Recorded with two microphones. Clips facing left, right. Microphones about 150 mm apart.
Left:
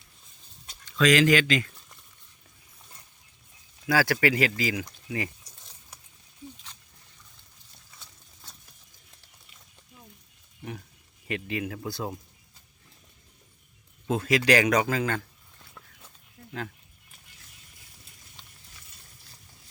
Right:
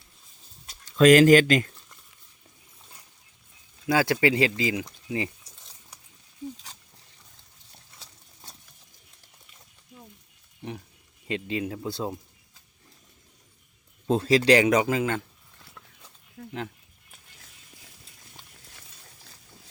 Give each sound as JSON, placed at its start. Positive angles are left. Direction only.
{"t": 0.9, "sound": "speech", "side_deg": -45}
{"t": 3.8, "sound": "speech", "side_deg": -20}
{"t": 7.9, "sound": "horse", "side_deg": -30}
{"t": 11.3, "sound": "speech", "side_deg": -25}
{"t": 14.1, "sound": "speech", "side_deg": -30}
{"t": 16.4, "sound": "a sound", "side_deg": -90}